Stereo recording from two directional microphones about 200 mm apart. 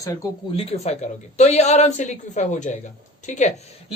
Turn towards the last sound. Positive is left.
turn(degrees=35)  # may be behind; listen again after turning